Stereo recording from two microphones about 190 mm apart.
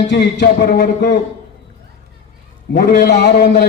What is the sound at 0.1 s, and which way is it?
Speech, 65° left (ahead or behind).